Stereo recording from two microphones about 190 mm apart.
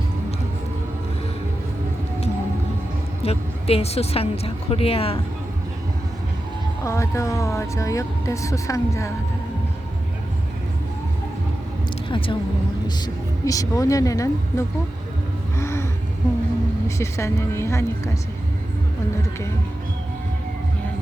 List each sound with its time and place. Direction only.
3.2 s a woman's voice: 30° left (ahead or behind)
6.8 s speech: 15° left (ahead or behind)
12.0 s a sound: 25° left (ahead or behind)
13.4 s speech: 20° left (ahead or behind)
15.5 s a sound: 15° left (ahead or behind)
17.0 s speech: 15° left (ahead or behind)